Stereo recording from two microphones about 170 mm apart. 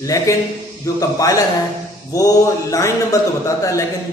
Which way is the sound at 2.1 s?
20° left (ahead or behind).